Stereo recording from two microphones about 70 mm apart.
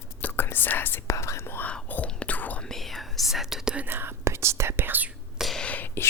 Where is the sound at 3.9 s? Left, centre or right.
Right.